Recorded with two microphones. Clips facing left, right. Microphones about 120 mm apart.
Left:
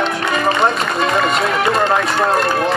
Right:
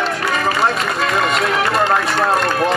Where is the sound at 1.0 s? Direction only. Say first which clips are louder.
Left 2 dB; centre (ahead or behind).